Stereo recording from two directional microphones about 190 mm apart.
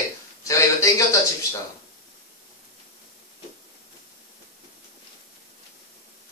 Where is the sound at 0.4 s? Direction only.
15° left (ahead or behind).